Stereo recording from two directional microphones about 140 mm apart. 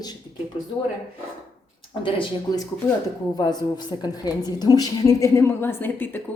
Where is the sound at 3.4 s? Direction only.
30° left (ahead or behind).